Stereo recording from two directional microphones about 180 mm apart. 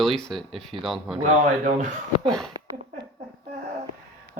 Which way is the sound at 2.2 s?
Centre (ahead or behind).